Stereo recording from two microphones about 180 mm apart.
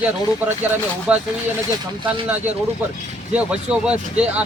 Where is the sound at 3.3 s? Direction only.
5° right (ahead or behind).